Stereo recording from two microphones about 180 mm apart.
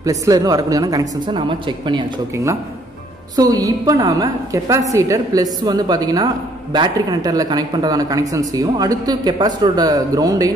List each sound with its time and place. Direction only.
0.0 s a woman's voice: 20° right (ahead or behind)